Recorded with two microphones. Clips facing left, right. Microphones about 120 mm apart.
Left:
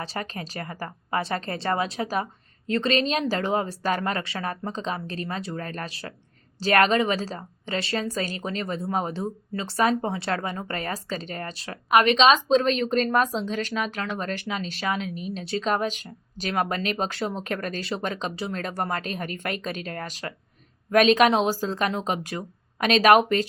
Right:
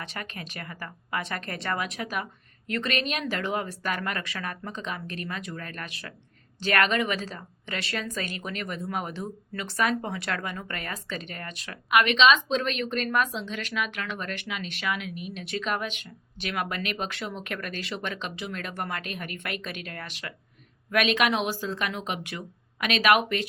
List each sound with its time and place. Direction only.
0.0 s a woman's voice: 30° left (ahead or behind)